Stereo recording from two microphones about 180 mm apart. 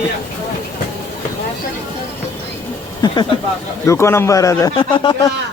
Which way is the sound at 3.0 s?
25° left (ahead or behind).